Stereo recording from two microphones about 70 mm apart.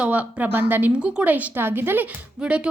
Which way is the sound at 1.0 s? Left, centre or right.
Centre.